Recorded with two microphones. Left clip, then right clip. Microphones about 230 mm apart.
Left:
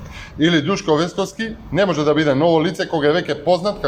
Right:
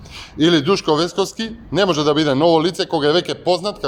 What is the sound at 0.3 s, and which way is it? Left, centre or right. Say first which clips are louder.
A man's voice: right 2 dB; right.